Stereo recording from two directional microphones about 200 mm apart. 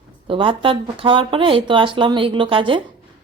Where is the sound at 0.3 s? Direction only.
25° right (ahead or behind).